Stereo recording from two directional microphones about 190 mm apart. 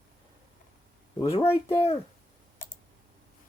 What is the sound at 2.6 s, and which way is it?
Clicking, 45° left (ahead or behind).